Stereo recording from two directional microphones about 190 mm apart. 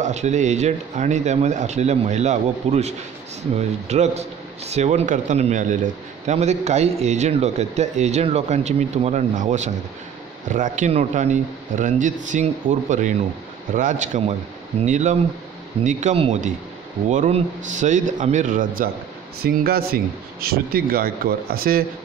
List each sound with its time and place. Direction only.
0.0 s a man's voice: 35° right (ahead or behind)